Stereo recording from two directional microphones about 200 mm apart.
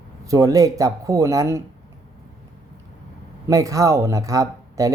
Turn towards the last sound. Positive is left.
turn(degrees=-15)  # may be behind; listen again after turning